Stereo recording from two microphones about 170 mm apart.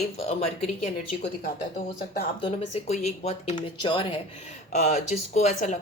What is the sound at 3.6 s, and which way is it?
Speech, 30° left (ahead or behind).